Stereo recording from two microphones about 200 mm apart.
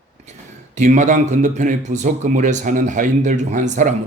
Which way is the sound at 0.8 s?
35° right (ahead or behind).